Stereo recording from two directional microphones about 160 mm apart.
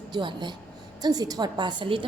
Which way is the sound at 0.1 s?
30° right (ahead or behind).